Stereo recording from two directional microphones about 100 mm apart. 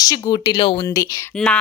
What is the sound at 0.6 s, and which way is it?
Speech, 55° left (ahead or behind).